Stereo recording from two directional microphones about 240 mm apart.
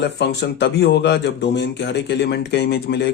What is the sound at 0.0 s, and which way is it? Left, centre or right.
Speech, left.